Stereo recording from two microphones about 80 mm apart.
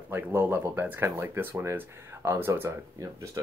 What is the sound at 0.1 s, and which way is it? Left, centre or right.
Speech, right.